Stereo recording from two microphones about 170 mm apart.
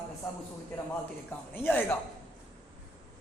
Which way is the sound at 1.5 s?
10° left (ahead or behind).